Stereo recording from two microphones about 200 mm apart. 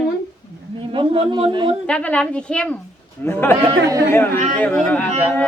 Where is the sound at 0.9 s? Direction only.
25° right (ahead or behind).